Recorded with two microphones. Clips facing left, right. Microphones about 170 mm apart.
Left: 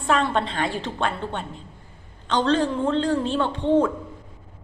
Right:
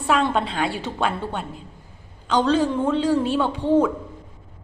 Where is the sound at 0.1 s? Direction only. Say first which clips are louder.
Right 1 dB; 5° right (ahead or behind).